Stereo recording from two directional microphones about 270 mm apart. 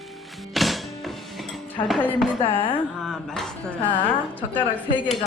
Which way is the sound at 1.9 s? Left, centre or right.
Centre.